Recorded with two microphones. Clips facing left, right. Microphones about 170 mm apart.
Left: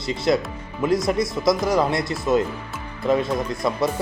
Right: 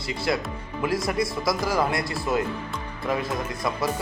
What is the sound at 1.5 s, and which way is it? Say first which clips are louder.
Speech: left 7 dB; 25° left (ahead or behind).